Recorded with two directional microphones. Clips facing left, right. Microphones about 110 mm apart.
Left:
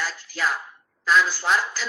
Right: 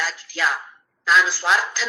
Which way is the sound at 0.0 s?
90° right.